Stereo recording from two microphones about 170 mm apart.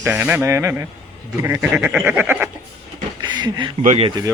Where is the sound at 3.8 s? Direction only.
40° right (ahead or behind).